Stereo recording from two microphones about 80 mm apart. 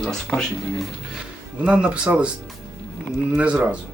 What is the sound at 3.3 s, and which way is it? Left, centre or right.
Speech, centre.